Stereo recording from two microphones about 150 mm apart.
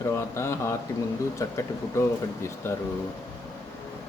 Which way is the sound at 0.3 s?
15° left (ahead or behind).